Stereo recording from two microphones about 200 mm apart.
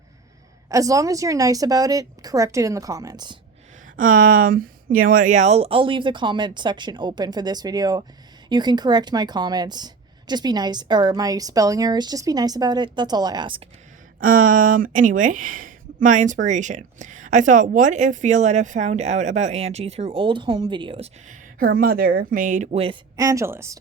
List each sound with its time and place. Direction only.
0.7 s a woman's voice: 15° right (ahead or behind)
4.1 s speech: 90° right
4.4 s a woman's voice: 45° right (ahead or behind); by 13.6 s 20° right (ahead or behind)
14.2 s speech: 45° right (ahead or behind); by 21.1 s 25° right (ahead or behind)
21.8 s speech: 50° right (ahead or behind); by 23.0 s 30° right (ahead or behind)
23.1 s a woman's voice: 15° right (ahead or behind)